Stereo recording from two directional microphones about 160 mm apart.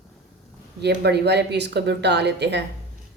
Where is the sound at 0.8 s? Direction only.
90° right.